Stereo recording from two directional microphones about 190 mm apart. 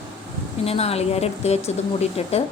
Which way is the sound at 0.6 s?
30° left (ahead or behind).